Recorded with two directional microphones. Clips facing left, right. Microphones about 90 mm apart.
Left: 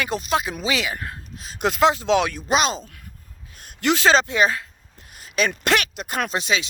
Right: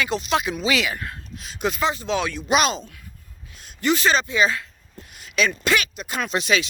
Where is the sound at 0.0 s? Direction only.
45° left (ahead or behind).